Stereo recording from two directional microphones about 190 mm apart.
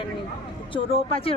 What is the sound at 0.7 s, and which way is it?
Speech, 30° left (ahead or behind).